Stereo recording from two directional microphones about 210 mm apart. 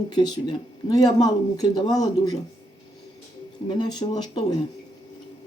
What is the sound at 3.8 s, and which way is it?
Speech, 20° left (ahead or behind).